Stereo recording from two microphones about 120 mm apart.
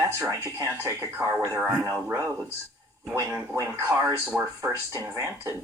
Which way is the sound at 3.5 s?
20° right (ahead or behind).